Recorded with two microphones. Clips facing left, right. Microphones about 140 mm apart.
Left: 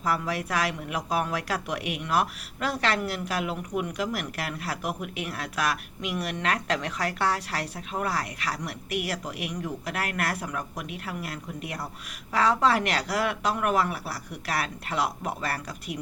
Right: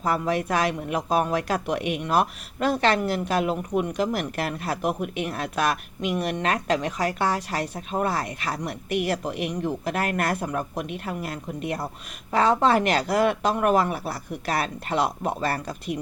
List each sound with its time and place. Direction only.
0.0 s speech: 25° right (ahead or behind)